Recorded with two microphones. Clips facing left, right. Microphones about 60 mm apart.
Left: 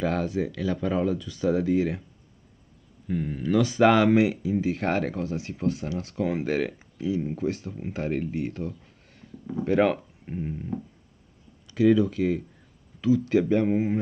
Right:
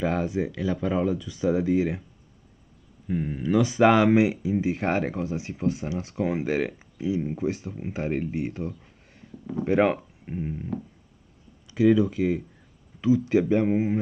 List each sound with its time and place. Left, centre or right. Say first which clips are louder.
0.0 s speech: right 1 dB; centre
3.1 s speech: right 1 dB; centre
11.7 s speech: even; centre